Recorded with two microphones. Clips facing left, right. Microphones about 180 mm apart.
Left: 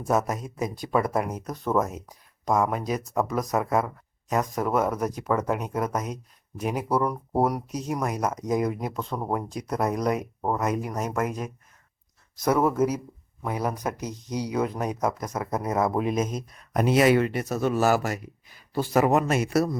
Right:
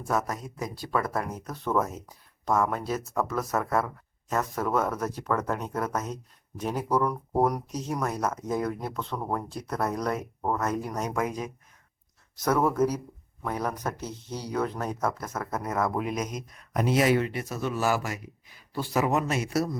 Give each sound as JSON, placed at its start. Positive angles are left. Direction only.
{"t": 0.1, "sound": "speech", "side_deg": 20}
{"t": 16.7, "sound": "speech", "side_deg": 65}
{"t": 17.5, "sound": "speech", "side_deg": 40}